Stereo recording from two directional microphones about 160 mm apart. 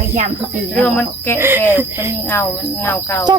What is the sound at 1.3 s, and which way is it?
Speech, 15° right (ahead or behind).